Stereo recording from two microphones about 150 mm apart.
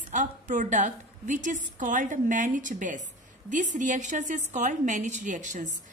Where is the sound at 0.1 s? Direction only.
55° right (ahead or behind).